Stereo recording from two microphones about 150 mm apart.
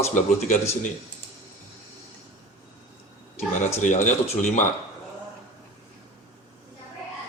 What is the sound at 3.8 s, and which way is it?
Speech, 55° left (ahead or behind).